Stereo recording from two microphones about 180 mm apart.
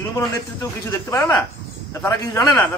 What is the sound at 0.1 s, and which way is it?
Speech, 15° left (ahead or behind).